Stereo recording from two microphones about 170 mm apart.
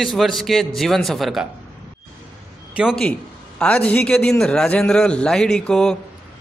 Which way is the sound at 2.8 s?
Centre (ahead or behind).